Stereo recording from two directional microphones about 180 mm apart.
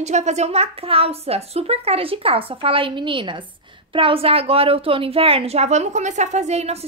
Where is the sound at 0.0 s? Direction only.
40° right (ahead or behind).